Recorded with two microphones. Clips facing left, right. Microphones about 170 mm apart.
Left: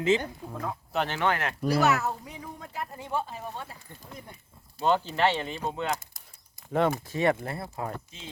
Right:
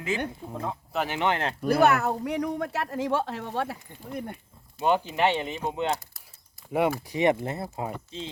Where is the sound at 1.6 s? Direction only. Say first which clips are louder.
Right 3 dB; 55° right (ahead or behind); by 3.8 s 85° right.